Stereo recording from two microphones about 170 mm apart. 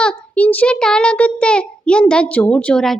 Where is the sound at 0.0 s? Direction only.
5° left (ahead or behind).